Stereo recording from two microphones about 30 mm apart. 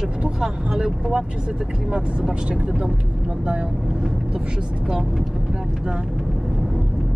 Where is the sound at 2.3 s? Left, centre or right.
Right.